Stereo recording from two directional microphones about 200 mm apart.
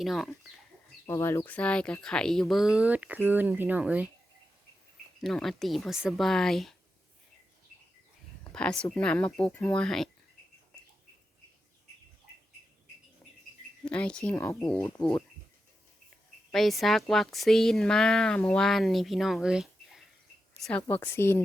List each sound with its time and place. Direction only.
0.0 s a woman's voice: centre (ahead or behind)
1.0 s a woman's voice: 15° left (ahead or behind); by 4.1 s 5° right (ahead or behind)
5.2 s a woman's voice: centre (ahead or behind)
8.8 s a woman's voice: 5° left (ahead or behind)
13.8 s a woman's voice: 5° left (ahead or behind)
16.5 s a woman's voice: centre (ahead or behind)
20.8 s speech: 10° left (ahead or behind)